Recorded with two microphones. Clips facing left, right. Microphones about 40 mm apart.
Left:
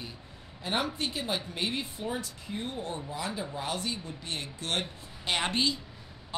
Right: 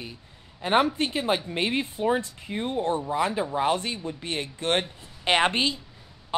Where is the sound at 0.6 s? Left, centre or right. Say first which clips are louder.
Right 9 dB; right.